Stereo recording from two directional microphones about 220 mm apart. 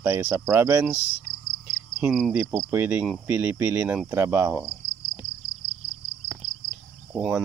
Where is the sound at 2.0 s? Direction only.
5° right (ahead or behind).